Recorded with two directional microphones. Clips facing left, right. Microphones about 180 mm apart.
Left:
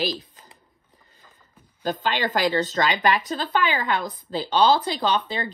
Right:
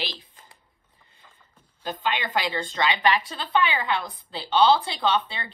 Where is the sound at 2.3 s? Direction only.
45° left (ahead or behind).